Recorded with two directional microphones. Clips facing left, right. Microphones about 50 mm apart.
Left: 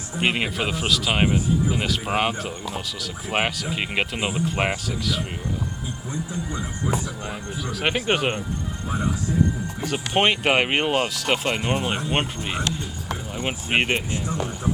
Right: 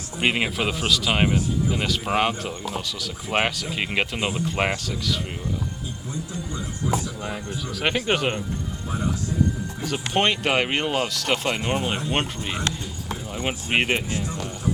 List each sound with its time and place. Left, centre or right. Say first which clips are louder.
0.2 s speech: even; centre
6.5 s speech: right 1 dB; left
7.3 s speech: even; centre
9.8 s speech: left 1 dB; centre
14.1 s speech: left 2 dB; left